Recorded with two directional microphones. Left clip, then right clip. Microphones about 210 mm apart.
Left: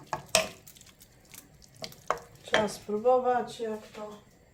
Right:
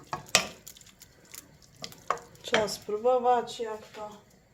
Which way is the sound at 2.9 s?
40° right (ahead or behind).